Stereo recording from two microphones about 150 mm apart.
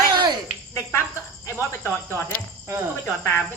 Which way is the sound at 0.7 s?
15° left (ahead or behind).